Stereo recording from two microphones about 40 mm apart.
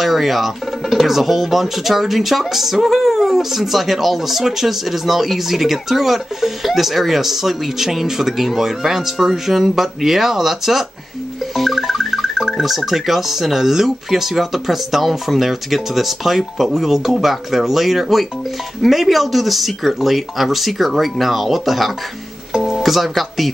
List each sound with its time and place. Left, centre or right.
0.0 s speech: centre
11.5 s music: centre
13.8 s speech: centre